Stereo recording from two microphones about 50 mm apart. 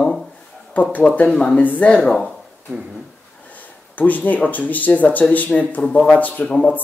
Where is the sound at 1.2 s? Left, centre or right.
Centre.